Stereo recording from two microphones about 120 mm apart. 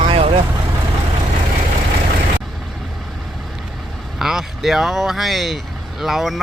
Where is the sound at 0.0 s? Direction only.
55° right (ahead or behind).